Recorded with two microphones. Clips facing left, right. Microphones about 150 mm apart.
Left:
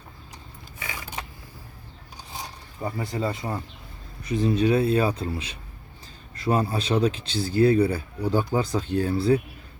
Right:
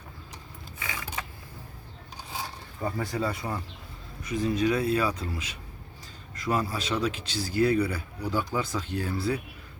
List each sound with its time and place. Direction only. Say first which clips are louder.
2.8 s speech: left 1 dB; 25° left (ahead or behind)